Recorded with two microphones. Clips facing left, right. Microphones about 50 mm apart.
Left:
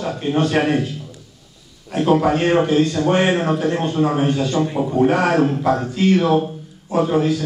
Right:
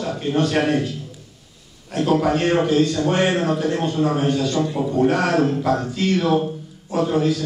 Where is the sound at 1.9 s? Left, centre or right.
Centre.